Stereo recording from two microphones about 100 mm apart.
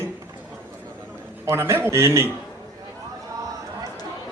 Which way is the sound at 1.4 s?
25° right (ahead or behind).